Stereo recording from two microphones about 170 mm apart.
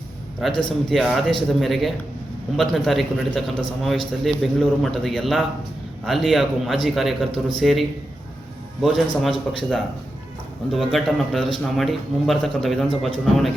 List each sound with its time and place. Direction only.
0.9 s a man's voice: centre (ahead or behind)